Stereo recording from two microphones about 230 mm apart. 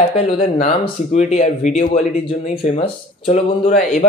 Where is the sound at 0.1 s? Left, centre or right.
Left.